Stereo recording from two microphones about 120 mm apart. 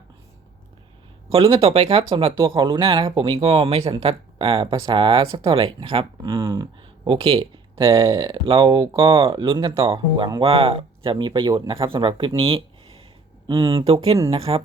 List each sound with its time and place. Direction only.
1.3 s speech: 50° right (ahead or behind)
2.0 s speech: 45° right (ahead or behind)
12.4 s a sound: 50° right (ahead or behind)
13.7 s speech: 55° right (ahead or behind)